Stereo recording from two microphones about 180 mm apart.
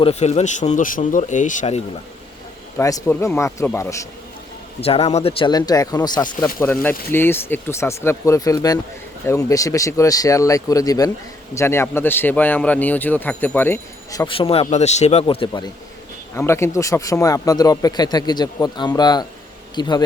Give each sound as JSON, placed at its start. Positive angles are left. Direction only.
{"t": 0.0, "sound": "speech", "side_deg": 35}
{"t": 2.7, "sound": "a man's voice", "side_deg": 15}
{"t": 4.8, "sound": "speech", "side_deg": 35}
{"t": 6.6, "sound": "a man's voice", "side_deg": 10}
{"t": 14.3, "sound": "speech", "side_deg": 30}
{"t": 16.3, "sound": "speech", "side_deg": 15}